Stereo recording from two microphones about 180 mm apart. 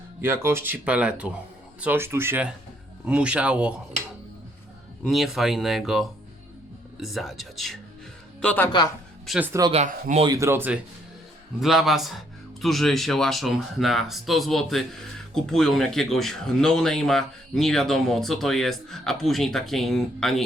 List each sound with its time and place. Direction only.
0.2 s speech: 15° right (ahead or behind)
5.0 s speech: centre (ahead or behind)
9.2 s speech: centre (ahead or behind)
9.5 s speech: 20° right (ahead or behind)
9.7 s speech: 40° right (ahead or behind)
10.2 s speech: 15° right (ahead or behind); by 20.4 s centre (ahead or behind)